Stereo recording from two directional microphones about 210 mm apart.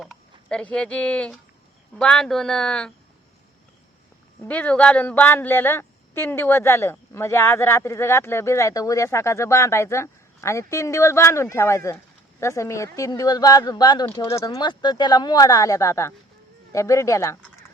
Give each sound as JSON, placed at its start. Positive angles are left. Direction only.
{"t": 0.0, "sound": "speech", "side_deg": 0}
{"t": 4.4, "sound": "speech", "side_deg": 5}